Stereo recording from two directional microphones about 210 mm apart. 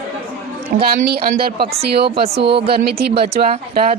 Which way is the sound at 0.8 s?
45° right (ahead or behind).